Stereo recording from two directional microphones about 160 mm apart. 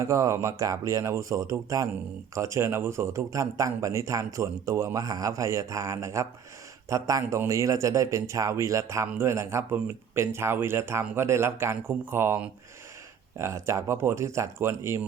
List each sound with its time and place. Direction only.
0.0 s a man's voice: 20° right (ahead or behind)